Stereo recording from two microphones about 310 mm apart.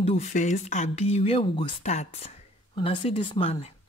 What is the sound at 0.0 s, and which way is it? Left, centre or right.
Speech, left.